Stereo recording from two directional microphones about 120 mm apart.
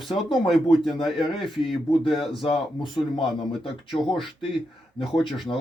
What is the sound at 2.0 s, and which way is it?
Speech, 45° left (ahead or behind).